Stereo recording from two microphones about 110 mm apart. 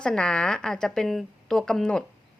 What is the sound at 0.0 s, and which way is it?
A woman's voice, 5° left (ahead or behind).